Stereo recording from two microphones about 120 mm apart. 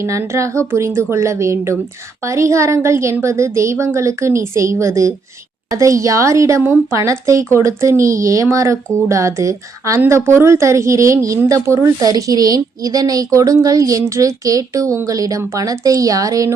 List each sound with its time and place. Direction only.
0.0 s a woman's voice: 25° right (ahead or behind)